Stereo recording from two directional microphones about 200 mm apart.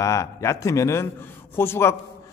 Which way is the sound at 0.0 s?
15° left (ahead or behind).